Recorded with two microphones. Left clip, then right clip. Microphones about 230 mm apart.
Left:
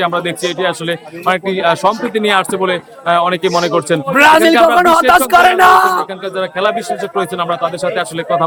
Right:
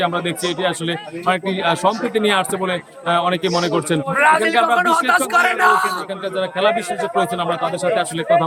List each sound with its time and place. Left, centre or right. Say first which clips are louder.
0.0 s a man's voice: left 4 dB; centre
4.1 s a man's voice: left 7 dB; left; by 6.1 s centre
6.3 s a man's voice: left 2 dB; centre